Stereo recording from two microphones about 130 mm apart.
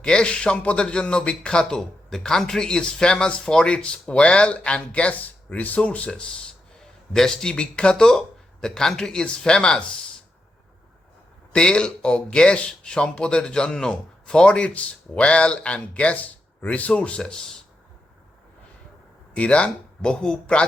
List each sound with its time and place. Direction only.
0.0 s speech: 5° left (ahead or behind)
11.5 s speech: 5° left (ahead or behind)
19.3 s speech: 10° left (ahead or behind)